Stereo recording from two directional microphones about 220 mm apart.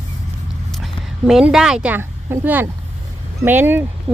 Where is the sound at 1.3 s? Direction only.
Centre (ahead or behind).